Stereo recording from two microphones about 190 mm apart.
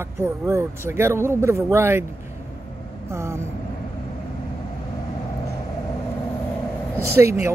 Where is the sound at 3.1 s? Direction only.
15° right (ahead or behind).